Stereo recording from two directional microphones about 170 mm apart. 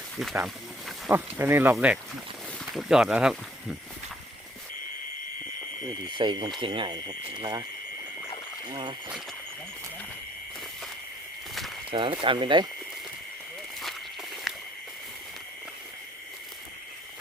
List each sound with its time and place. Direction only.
0.4 s snake: centre (ahead or behind)
1.1 s speech: 10° right (ahead or behind)
5.8 s speech: 25° right (ahead or behind)
8.6 s speech: 30° right (ahead or behind)
11.9 s speech: 30° right (ahead or behind)
13.8 s walk: centre (ahead or behind)